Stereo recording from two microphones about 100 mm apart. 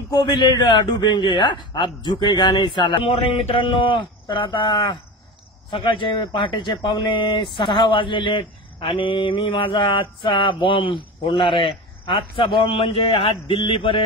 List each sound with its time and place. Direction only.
0.1 s a man's voice: 50° left (ahead or behind); by 14.0 s 65° left (ahead or behind)